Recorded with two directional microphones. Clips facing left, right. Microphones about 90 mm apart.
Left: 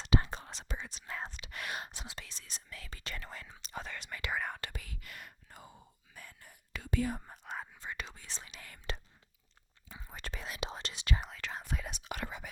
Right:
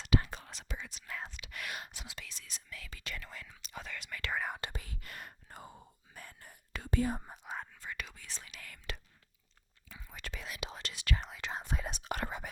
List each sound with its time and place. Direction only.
0.0 s speech: 30° left (ahead or behind)
4.4 s speech: 5° right (ahead or behind)
4.6 s speech: 30° right (ahead or behind)
7.2 s speech: 15° right (ahead or behind)
7.7 s speech: 20° left (ahead or behind)
11.3 s speech: 20° right (ahead or behind)
12.0 s speech: 45° right (ahead or behind)